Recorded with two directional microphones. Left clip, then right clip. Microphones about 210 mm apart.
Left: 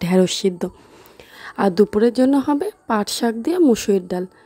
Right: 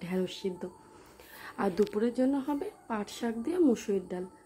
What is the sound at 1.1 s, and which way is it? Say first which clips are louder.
A woman's voice: left 12 dB; 35° left (ahead or behind).